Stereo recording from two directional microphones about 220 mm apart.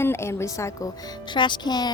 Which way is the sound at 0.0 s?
10° left (ahead or behind).